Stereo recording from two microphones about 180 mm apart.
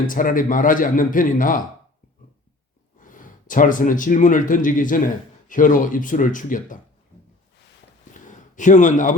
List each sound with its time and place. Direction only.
0.1 s a man's voice: 50° left (ahead or behind)
3.0 s a man's voice: 45° left (ahead or behind)
8.1 s a sound: 45° left (ahead or behind)